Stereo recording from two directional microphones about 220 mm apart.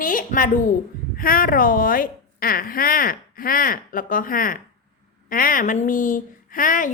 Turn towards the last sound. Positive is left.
turn(degrees=40)  # may be behind; listen again after turning